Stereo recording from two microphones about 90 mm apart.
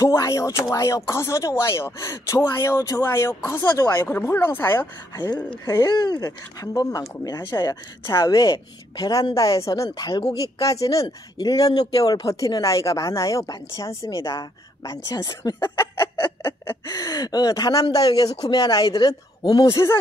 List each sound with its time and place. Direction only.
0.0 s speech: 35° left (ahead or behind)
5.1 s speech: 50° left (ahead or behind)
8.0 s speech: 30° left (ahead or behind)
9.9 s speech: 50° left (ahead or behind)
10.6 s speech: 40° left (ahead or behind)
15.8 s fowl: 25° left (ahead or behind)
16.8 s speech: 40° left (ahead or behind)